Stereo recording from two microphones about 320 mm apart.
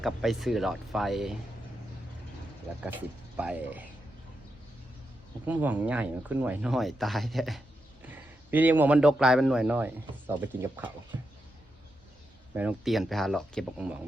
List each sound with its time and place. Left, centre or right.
0.0 s a man's voice: centre
2.8 s a man's voice: centre
5.5 s a man's voice: centre
12.5 s a man's voice: centre